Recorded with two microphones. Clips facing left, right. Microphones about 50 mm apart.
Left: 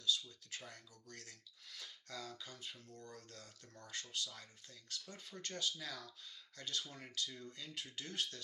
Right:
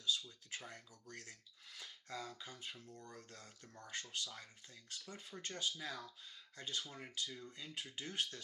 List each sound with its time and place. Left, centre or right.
0.0 s speech: right